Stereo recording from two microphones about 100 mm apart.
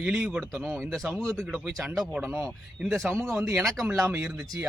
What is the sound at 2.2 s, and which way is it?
Speech, 25° right (ahead or behind).